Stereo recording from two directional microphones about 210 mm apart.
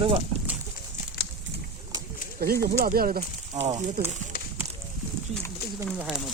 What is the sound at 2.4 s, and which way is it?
Speech, 45° right (ahead or behind).